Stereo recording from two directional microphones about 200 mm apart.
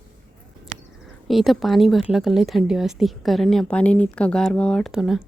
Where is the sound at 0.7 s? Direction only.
40° right (ahead or behind).